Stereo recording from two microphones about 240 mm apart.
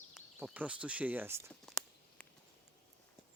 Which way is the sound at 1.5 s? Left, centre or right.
Centre.